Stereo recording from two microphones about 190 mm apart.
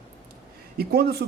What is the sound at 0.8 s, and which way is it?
Speech, 55° right (ahead or behind).